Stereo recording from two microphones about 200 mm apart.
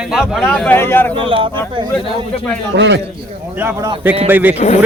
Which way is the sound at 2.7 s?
60° right (ahead or behind).